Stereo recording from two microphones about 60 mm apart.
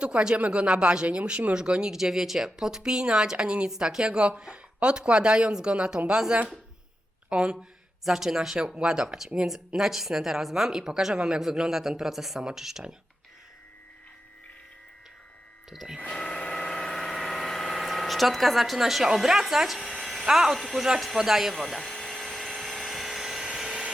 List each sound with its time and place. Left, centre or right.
0.0 s speech: centre
15.7 s speech: centre
16.0 s a sound: centre